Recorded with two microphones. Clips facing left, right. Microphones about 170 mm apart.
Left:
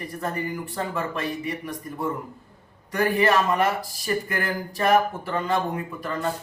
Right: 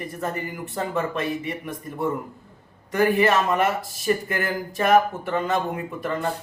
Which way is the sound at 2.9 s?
25° right (ahead or behind).